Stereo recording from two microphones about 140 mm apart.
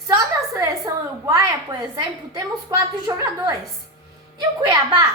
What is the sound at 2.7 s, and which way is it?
Speech, 25° right (ahead or behind).